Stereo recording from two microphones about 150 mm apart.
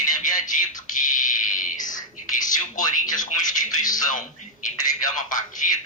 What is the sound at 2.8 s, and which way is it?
A man's voice, 60° left (ahead or behind).